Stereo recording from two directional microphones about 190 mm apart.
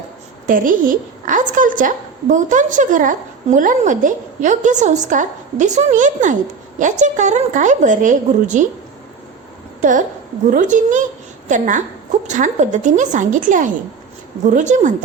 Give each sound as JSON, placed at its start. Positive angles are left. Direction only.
{"t": 0.4, "sound": "a woman's voice", "side_deg": -45}
{"t": 10.5, "sound": "speech", "side_deg": -40}